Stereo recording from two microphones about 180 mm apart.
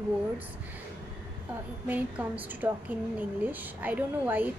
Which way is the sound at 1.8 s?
10° right (ahead or behind).